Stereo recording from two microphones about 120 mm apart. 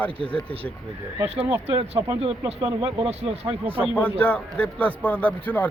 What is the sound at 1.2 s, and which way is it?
Speech, 60° right (ahead or behind).